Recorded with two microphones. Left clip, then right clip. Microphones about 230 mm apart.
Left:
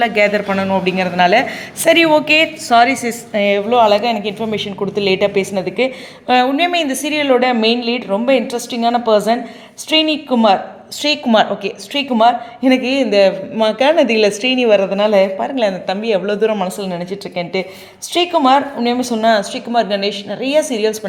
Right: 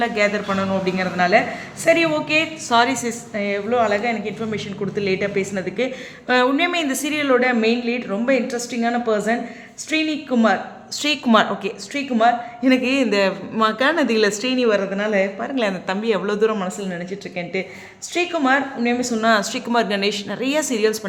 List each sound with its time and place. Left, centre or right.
0.0 s a woman's voice: centre
2.7 s a woman's voice: centre
3.3 s a woman's voice: centre
4.0 s a woman's voice: centre
4.4 s a woman's voice: centre
15.5 s a woman's voice: centre